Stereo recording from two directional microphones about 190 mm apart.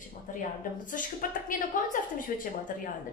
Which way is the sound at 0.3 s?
45° left (ahead or behind).